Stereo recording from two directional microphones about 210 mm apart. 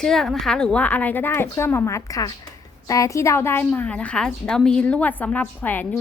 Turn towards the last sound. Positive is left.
turn(degrees=10)  # may be behind; listen again after turning